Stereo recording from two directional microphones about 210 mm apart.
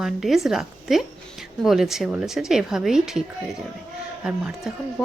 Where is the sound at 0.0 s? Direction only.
Centre (ahead or behind).